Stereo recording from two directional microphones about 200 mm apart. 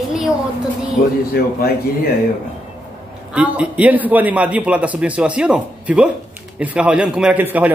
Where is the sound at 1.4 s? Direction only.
50° left (ahead or behind).